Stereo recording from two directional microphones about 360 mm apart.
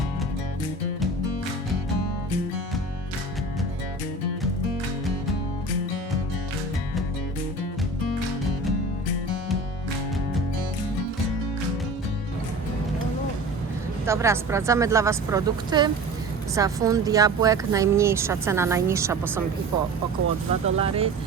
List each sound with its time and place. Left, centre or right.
14.1 s speech: centre
20.7 s speech: centre